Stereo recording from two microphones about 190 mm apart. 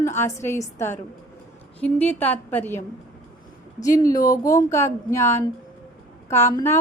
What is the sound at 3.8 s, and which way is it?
A woman's voice, 20° left (ahead or behind).